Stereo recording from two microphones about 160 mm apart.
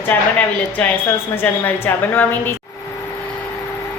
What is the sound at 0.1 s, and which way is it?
Speech, 10° left (ahead or behind).